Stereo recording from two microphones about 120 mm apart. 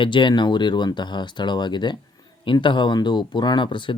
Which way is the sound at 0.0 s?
40° left (ahead or behind).